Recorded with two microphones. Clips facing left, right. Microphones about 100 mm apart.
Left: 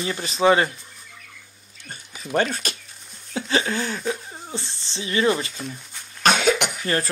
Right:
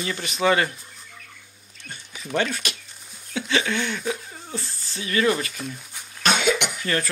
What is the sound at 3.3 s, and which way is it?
Speech, 35° left (ahead or behind).